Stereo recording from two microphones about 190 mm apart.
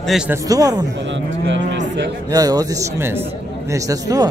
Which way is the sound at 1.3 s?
75° right (ahead or behind).